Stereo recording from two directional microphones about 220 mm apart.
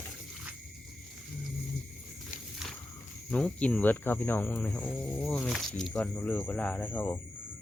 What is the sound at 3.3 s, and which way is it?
Speech, 5° left (ahead or behind).